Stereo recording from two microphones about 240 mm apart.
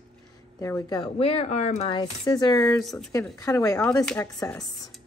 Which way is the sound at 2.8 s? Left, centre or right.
Centre.